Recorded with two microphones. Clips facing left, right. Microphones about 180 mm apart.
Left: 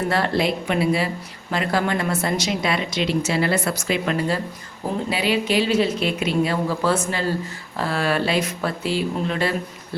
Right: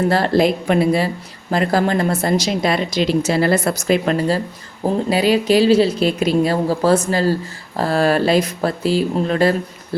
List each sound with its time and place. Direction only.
0.1 s speech: 40° right (ahead or behind)